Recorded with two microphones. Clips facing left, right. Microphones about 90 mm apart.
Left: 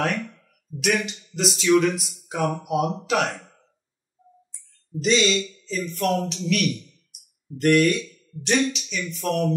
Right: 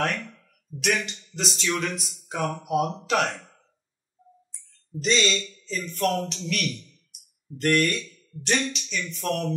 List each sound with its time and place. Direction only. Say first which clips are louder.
0.0 s speech: left 2 dB; 5° left (ahead or behind)
4.5 s a woman's voice: left 4 dB; centre (ahead or behind)